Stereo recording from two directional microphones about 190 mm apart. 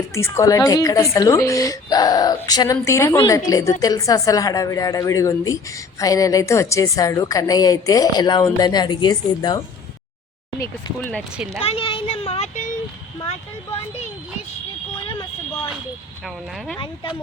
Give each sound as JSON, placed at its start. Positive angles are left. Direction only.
{"t": 0.1, "sound": "a woman's voice", "side_deg": 15}
{"t": 11.6, "sound": "a sound", "side_deg": 30}
{"t": 16.2, "sound": "speech", "side_deg": 0}